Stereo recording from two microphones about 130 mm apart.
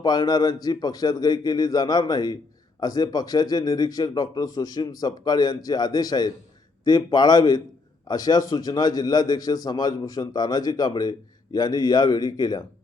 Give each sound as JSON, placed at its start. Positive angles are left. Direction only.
{"t": 0.0, "sound": "a man's voice", "side_deg": 30}